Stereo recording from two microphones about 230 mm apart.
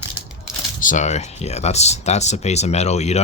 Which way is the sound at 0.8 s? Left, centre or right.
Left.